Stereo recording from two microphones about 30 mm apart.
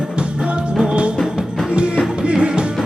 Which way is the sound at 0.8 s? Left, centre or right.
Right.